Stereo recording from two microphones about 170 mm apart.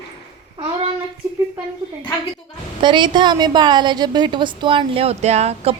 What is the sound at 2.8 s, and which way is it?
A woman's voice, 25° right (ahead or behind).